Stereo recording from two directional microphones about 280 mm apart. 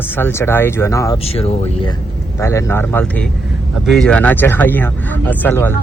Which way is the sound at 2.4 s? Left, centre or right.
Centre.